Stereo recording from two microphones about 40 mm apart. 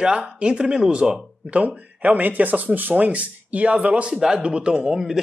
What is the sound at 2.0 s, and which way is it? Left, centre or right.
Speech, right.